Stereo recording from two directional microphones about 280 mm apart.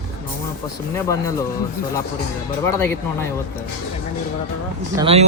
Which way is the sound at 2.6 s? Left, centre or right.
Centre.